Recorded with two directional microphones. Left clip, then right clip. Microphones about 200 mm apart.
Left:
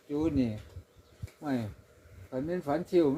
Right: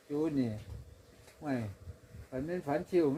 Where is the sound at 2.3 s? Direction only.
25° left (ahead or behind).